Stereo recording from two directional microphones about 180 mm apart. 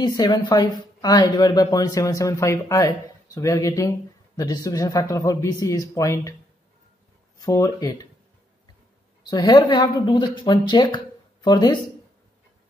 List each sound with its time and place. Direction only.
0.0 s a woman's voice: 20° left (ahead or behind)
7.4 s a woman's voice: 20° left (ahead or behind)
9.3 s a woman's voice: 25° left (ahead or behind)